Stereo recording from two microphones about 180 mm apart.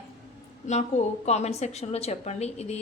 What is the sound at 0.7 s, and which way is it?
A woman's voice, 40° left (ahead or behind).